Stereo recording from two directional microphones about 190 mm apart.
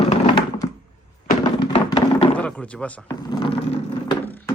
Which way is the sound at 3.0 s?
25° left (ahead or behind).